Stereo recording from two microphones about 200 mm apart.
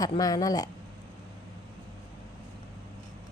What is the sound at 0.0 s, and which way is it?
Speech, 20° left (ahead or behind).